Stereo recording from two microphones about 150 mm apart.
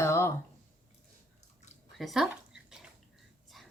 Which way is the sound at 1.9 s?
Centre (ahead or behind).